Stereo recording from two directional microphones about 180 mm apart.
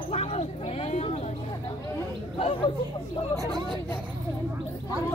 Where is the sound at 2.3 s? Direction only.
30° left (ahead or behind).